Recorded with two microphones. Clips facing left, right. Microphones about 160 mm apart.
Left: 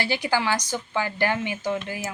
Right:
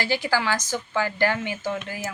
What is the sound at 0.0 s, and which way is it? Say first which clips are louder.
Speech: even; 20° left (ahead or behind).